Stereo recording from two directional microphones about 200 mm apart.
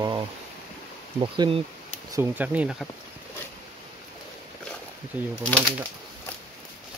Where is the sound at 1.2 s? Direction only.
25° right (ahead or behind).